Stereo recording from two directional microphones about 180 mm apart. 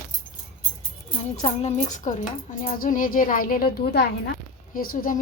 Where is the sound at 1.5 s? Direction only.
35° left (ahead or behind).